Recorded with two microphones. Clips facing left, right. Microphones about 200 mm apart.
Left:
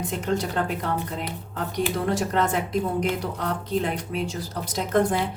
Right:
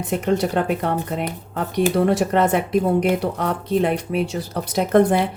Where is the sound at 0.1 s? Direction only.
65° right (ahead or behind).